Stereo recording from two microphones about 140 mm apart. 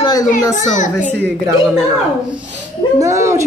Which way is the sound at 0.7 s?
60° left (ahead or behind).